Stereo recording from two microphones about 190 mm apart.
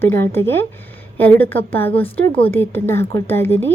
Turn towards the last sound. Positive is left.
turn(degrees=10)  # may be behind; listen again after turning